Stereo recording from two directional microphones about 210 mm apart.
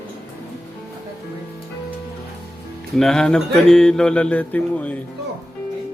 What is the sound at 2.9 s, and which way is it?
Mantra, centre (ahead or behind).